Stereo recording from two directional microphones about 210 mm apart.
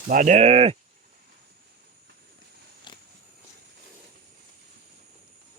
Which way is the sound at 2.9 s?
20° left (ahead or behind).